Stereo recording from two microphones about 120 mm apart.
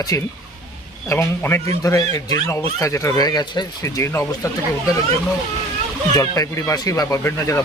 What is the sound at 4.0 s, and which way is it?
Speech, 25° left (ahead or behind).